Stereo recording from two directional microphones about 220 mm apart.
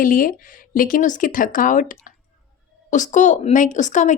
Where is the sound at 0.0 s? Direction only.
40° left (ahead or behind).